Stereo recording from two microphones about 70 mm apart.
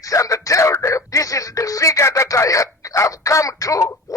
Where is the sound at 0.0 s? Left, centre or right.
Left.